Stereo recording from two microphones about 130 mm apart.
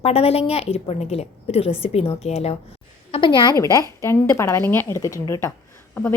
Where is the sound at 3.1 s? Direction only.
40° left (ahead or behind).